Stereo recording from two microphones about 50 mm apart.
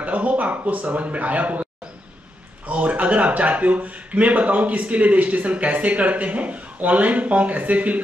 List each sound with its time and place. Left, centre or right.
0.0 s speech: right